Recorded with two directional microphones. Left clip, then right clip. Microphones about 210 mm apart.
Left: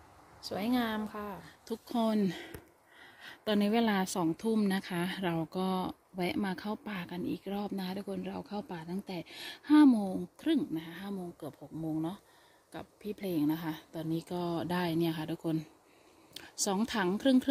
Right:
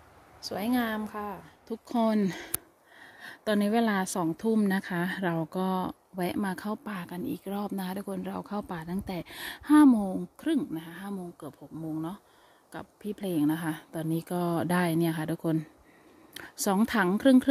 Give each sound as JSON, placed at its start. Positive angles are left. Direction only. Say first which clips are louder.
{"t": 0.4, "sound": "a woman's voice", "louder": "right 3 dB", "side_deg": -5}
{"t": 12.7, "sound": "speech", "louder": "right 3 dB", "side_deg": -20}